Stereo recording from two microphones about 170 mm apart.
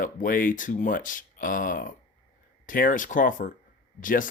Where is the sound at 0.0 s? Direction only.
55° left (ahead or behind).